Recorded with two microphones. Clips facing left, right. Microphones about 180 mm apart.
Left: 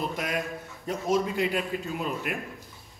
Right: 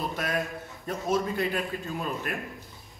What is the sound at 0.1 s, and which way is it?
A man's voice, 15° left (ahead or behind).